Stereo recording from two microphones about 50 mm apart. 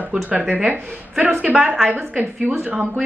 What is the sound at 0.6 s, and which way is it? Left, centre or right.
Speech, centre.